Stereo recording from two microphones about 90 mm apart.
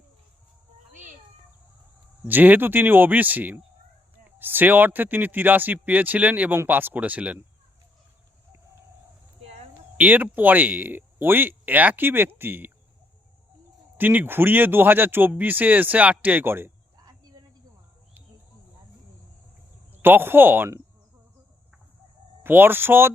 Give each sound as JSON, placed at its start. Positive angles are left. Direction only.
{"t": 2.2, "sound": "speech", "side_deg": -20}
{"t": 10.0, "sound": "speech", "side_deg": -20}
{"t": 14.0, "sound": "speech", "side_deg": -20}
{"t": 19.9, "sound": "speech", "side_deg": -25}
{"t": 22.4, "sound": "speech", "side_deg": -25}